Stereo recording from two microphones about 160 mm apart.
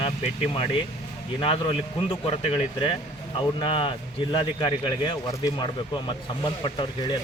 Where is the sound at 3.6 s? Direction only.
30° left (ahead or behind).